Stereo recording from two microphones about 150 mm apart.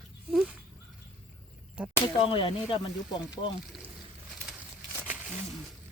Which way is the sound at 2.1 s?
35° left (ahead or behind).